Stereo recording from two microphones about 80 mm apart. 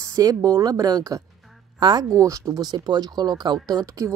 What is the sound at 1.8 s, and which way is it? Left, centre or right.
Speech, right.